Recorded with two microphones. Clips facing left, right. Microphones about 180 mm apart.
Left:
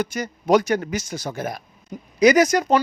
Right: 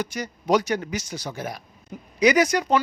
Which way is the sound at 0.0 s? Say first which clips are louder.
Left 4 dB; 50° left (ahead or behind).